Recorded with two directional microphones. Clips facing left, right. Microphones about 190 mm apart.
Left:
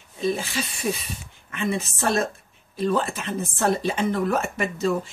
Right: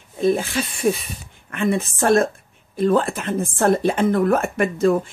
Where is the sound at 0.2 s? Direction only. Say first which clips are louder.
Right 6 dB; 55° right (ahead or behind).